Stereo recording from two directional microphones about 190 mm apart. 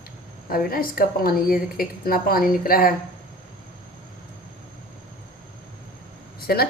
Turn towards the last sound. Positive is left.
turn(degrees=55)  # may be behind; listen again after turning